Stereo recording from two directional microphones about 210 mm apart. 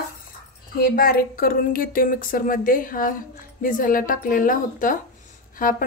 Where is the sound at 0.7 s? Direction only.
45° left (ahead or behind).